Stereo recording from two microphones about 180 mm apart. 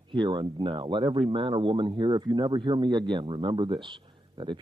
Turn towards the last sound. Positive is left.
turn(degrees=-25)  # may be behind; listen again after turning